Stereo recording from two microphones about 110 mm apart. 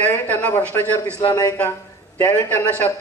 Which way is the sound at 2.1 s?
20° left (ahead or behind).